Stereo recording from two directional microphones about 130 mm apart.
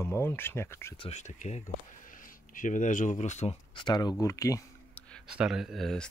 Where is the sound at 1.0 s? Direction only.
60° left (ahead or behind).